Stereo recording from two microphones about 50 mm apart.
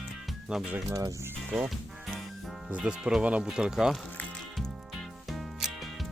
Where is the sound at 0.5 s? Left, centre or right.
Centre.